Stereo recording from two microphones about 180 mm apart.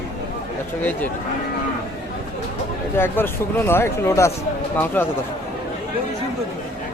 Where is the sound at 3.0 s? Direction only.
15° left (ahead or behind).